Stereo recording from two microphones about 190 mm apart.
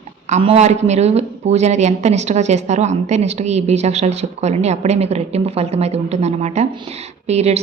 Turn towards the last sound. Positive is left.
turn(degrees=-35)  # may be behind; listen again after turning